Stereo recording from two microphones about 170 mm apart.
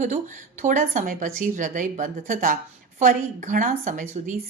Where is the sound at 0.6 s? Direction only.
45° right (ahead or behind).